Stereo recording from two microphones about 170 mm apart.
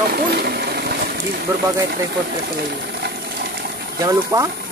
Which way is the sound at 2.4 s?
65° right (ahead or behind).